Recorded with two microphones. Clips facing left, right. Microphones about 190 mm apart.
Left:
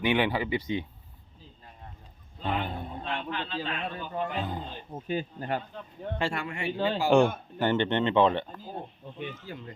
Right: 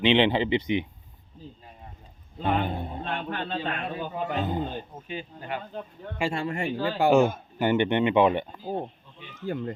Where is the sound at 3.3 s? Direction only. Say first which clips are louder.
Right 3 dB; 55° right (ahead or behind).